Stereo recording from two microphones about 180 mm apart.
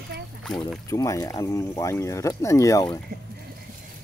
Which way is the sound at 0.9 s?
20° left (ahead or behind).